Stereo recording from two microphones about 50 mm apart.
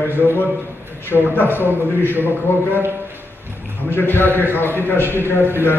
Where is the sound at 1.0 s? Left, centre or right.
Left.